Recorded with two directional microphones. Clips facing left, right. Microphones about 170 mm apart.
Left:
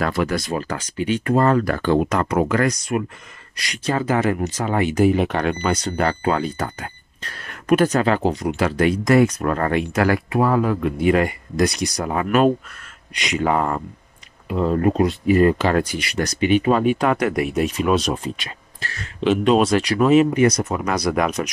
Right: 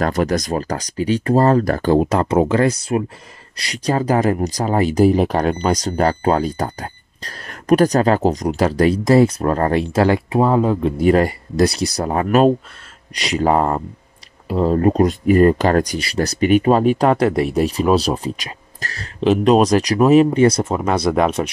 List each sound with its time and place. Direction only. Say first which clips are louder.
0.0 s speech: right 3 dB; 40° right (ahead or behind); by 11.0 s 25° right (ahead or behind)
11.0 s speech: right 3 dB; 35° right (ahead or behind)